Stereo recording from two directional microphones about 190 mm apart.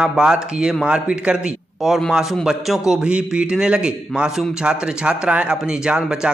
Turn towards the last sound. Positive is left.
turn(degrees=-5)  # may be behind; listen again after turning